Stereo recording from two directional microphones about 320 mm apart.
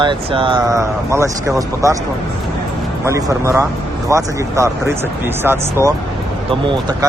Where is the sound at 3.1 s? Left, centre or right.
Centre.